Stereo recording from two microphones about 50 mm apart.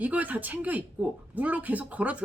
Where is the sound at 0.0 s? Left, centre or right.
Right.